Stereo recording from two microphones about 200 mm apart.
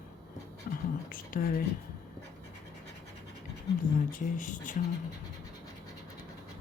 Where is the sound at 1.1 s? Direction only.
45° left (ahead or behind).